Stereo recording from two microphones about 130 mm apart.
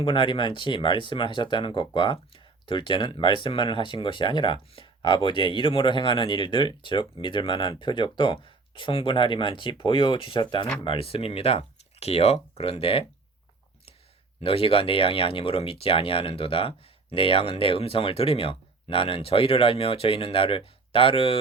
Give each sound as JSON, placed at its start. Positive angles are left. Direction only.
{"t": 0.0, "sound": "speech", "side_deg": 40}
{"t": 14.4, "sound": "speech", "side_deg": 45}